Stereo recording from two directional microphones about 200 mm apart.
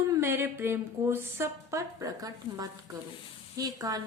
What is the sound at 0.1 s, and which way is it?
A woman's voice, 10° right (ahead or behind).